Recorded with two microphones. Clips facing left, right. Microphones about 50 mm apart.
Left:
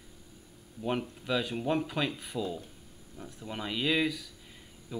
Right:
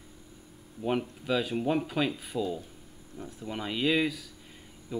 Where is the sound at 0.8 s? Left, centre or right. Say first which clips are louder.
Right 3 dB; centre.